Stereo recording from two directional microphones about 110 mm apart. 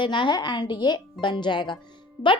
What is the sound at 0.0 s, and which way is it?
A woman's voice, 45° left (ahead or behind).